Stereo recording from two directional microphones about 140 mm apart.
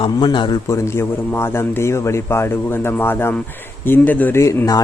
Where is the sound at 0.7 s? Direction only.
20° left (ahead or behind).